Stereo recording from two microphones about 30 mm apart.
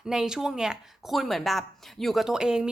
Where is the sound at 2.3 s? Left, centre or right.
Right.